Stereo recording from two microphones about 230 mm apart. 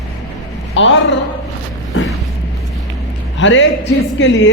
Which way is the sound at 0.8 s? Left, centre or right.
Left.